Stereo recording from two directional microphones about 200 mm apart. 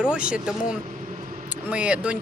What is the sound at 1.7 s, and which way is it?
Speech, 5° right (ahead or behind).